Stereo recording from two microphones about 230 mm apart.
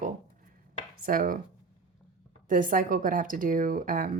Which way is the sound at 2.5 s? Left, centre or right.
Right.